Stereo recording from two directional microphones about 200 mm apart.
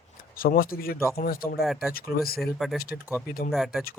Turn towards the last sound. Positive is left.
turn(degrees=0)  # may be behind; listen again after turning